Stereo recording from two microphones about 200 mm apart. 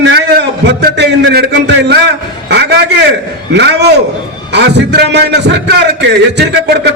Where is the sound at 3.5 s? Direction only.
55° right (ahead or behind).